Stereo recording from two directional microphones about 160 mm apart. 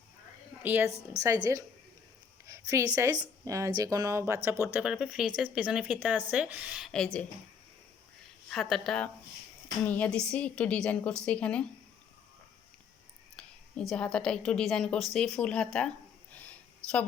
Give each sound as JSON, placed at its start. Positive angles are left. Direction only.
{"t": 0.6, "sound": "a woman's voice", "side_deg": -10}
{"t": 4.6, "sound": "a woman's voice", "side_deg": -5}
{"t": 8.4, "sound": "a woman's voice", "side_deg": 0}
{"t": 13.4, "sound": "a sound", "side_deg": 5}
{"t": 13.9, "sound": "a woman's voice", "side_deg": 5}
{"t": 16.4, "sound": "a sound", "side_deg": 10}